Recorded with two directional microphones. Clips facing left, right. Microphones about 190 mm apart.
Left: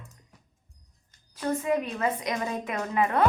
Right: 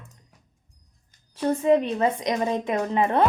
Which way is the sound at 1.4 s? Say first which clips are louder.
Right 7 dB; 25° right (ahead or behind).